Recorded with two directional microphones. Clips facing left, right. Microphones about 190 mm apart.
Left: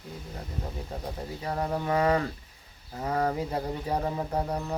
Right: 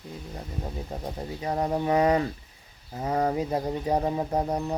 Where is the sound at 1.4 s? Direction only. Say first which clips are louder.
Right 4 dB; 20° right (ahead or behind).